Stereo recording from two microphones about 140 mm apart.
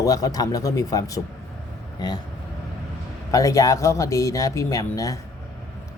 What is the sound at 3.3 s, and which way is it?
Speech, 25° left (ahead or behind).